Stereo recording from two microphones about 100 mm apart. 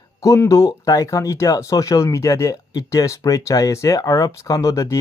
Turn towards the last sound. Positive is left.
turn(degrees=30)  # may be behind; listen again after turning